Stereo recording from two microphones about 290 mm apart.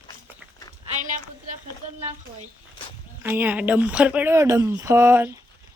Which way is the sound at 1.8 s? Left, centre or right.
Right.